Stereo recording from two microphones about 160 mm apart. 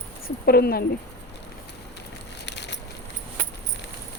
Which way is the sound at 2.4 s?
90° left.